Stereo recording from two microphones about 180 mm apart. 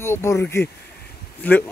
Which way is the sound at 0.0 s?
15° left (ahead or behind).